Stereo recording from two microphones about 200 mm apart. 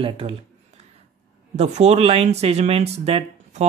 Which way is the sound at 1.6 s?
35° right (ahead or behind).